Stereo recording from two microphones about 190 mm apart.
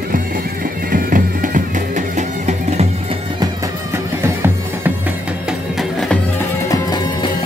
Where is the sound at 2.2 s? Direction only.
40° right (ahead or behind).